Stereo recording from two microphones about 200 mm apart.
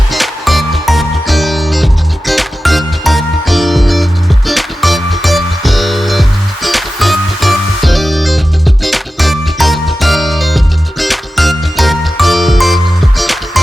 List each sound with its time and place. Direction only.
0.1 s music: centre (ahead or behind)